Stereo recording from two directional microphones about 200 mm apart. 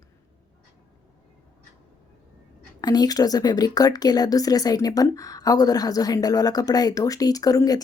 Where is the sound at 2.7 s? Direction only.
20° left (ahead or behind).